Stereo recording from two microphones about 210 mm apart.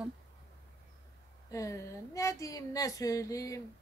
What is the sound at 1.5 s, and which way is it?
Speech, 15° left (ahead or behind).